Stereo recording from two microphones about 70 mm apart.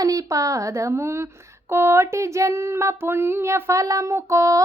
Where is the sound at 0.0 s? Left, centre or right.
Right.